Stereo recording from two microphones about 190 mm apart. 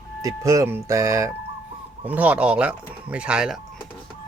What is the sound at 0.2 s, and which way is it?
Speech, 15° right (ahead or behind).